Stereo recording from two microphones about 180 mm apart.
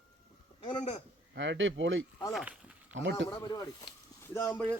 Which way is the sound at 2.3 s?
5° right (ahead or behind).